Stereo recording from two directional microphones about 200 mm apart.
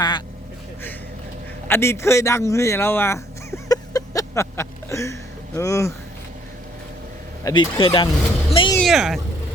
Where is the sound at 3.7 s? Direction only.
15° left (ahead or behind).